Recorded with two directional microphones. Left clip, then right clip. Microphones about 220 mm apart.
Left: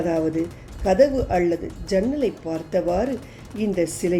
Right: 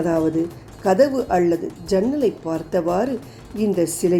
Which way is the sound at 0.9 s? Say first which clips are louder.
Right 1 dB; 5° right (ahead or behind).